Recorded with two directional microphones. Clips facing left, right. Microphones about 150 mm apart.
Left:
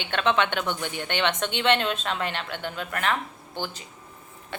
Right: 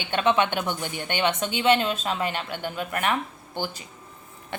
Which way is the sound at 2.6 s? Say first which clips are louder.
Right 2 dB; 45° right (ahead or behind).